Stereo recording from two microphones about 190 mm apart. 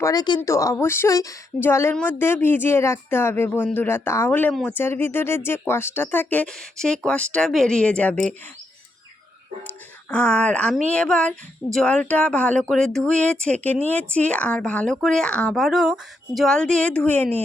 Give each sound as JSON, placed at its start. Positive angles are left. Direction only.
{"t": 0.0, "sound": "a woman's voice", "side_deg": 20}
{"t": 10.1, "sound": "speech", "side_deg": 5}